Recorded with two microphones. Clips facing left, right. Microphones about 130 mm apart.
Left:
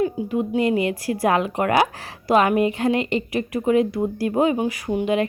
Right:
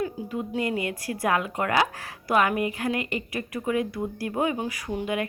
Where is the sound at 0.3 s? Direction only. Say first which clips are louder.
Left 7 dB; 20° left (ahead or behind).